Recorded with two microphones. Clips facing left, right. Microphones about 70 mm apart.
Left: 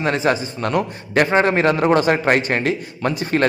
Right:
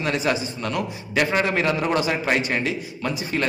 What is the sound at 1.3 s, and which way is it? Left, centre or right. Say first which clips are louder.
A man's voice: left 6 dB; left.